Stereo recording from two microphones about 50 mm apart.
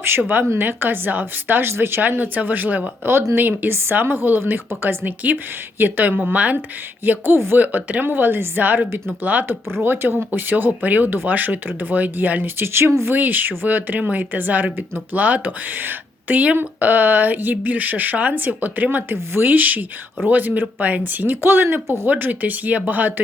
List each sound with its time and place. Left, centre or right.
0.5 s speech: right
1.7 s speech: right
2.0 s speech: right
3.0 s speech: right
3.3 s speech: right
3.8 s speech: right
7.0 s speech: right
7.3 s speech: right
7.6 s speech: right
8.0 s speech: right
9.8 s speech: right
13.1 s speech: right
19.1 s speech: right
19.5 s speech: right